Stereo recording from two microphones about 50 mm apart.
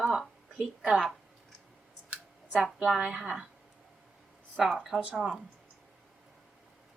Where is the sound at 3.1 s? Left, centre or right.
Centre.